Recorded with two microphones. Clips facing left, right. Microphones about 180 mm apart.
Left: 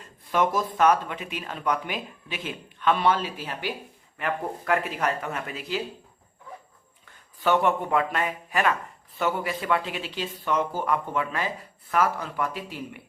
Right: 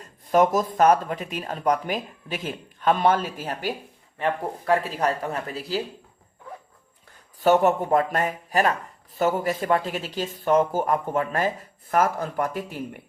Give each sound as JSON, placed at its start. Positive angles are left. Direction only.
{"t": 0.0, "sound": "speech", "side_deg": -40}
{"t": 4.2, "sound": "speech", "side_deg": -30}
{"t": 7.3, "sound": "speech", "side_deg": -40}